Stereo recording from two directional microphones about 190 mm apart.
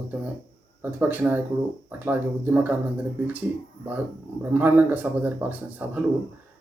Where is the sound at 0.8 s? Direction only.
10° right (ahead or behind).